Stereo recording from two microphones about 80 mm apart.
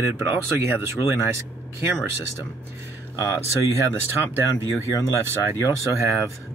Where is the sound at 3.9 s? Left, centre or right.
Right.